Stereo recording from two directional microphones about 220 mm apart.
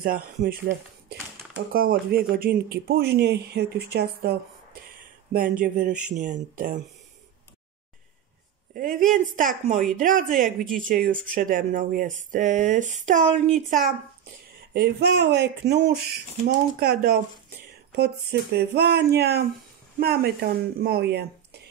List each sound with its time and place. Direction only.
0.0 s speech: 40° right (ahead or behind)
0.7 s a sound: 55° right (ahead or behind)
1.7 s speech: 40° right (ahead or behind)
8.7 s speech: 40° right (ahead or behind)
14.7 s speech: 50° right (ahead or behind)